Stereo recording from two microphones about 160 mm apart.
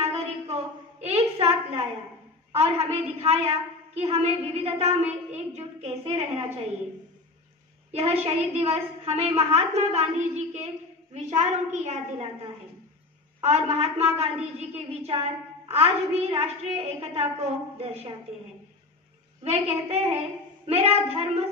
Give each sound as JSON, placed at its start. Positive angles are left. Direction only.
{"t": 0.0, "sound": "a sound", "side_deg": -40}
{"t": 2.5, "sound": "a woman's voice", "side_deg": -40}
{"t": 7.9, "sound": "a woman's voice", "side_deg": -40}
{"t": 13.4, "sound": "a woman's voice", "side_deg": -45}
{"t": 19.4, "sound": "a woman's voice", "side_deg": -40}